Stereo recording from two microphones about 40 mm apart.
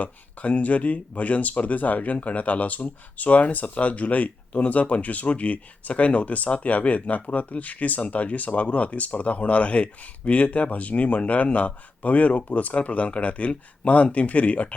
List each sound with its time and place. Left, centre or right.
0.0 s speech: left